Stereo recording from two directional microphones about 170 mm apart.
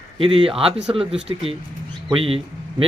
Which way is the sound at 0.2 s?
30° right (ahead or behind).